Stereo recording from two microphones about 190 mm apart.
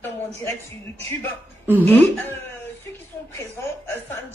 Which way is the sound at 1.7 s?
10° left (ahead or behind).